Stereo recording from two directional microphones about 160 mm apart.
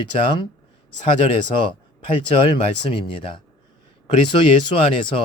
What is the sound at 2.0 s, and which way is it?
Speech, 35° left (ahead or behind).